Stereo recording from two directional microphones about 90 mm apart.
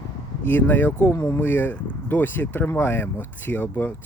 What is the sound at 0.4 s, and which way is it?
Speech, 20° left (ahead or behind).